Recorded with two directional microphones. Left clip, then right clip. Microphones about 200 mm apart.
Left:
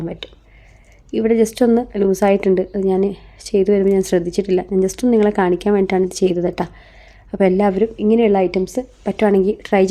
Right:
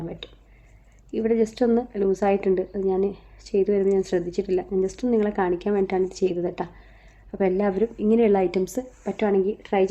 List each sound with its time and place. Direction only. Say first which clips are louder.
0.0 s a woman's voice: left 7 dB; 45° left (ahead or behind); by 8.8 s 30° left (ahead or behind)
9.0 s speech: left 7 dB; 50° left (ahead or behind)